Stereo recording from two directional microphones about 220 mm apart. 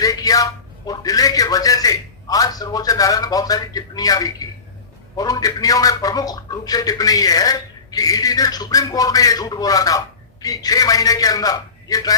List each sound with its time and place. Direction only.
0.0 s a man's voice: 15° left (ahead or behind)